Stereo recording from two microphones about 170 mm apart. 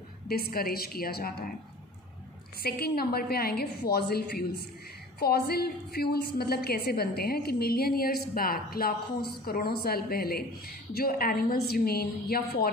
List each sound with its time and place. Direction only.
0.3 s a woman's voice: 60° left (ahead or behind)
2.6 s a woman's voice: 65° left (ahead or behind)